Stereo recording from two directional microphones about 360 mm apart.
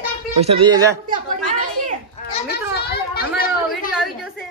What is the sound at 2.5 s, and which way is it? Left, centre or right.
Children playing, left.